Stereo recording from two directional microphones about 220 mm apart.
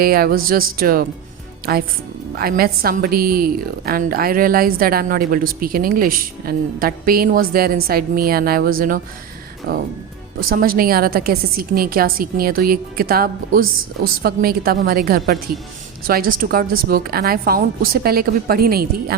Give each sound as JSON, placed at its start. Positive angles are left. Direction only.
{"t": 0.0, "sound": "a woman's voice", "side_deg": -45}